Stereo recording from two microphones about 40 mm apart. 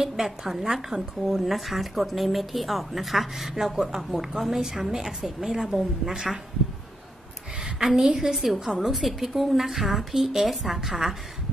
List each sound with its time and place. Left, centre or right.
0.0 s a woman's voice: centre
7.6 s a woman's voice: centre